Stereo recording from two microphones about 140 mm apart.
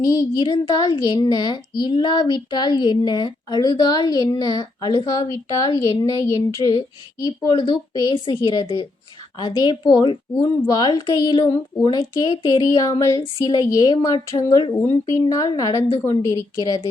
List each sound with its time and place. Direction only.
0.0 s a woman's voice: 25° left (ahead or behind)